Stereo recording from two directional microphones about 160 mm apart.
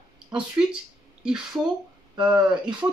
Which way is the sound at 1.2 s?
5° right (ahead or behind).